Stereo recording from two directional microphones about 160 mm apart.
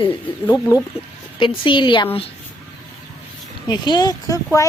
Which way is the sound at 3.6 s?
25° left (ahead or behind).